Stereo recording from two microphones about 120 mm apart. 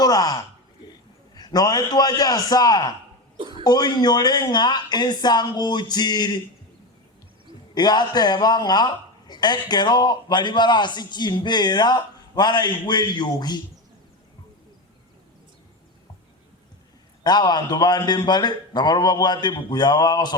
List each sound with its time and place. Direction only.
0.0 s speech: 30° left (ahead or behind)
1.4 s a man's voice: 35° left (ahead or behind)
3.3 s chuckle: 45° right (ahead or behind)
3.6 s a man's voice: 35° left (ahead or behind)
7.7 s a man's voice: 35° left (ahead or behind)
17.2 s a man's voice: 35° left (ahead or behind)